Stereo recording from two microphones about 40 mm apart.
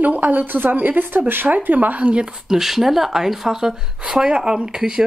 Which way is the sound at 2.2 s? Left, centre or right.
Centre.